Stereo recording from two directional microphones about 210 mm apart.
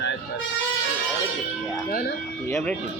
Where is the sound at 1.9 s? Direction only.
45° left (ahead or behind).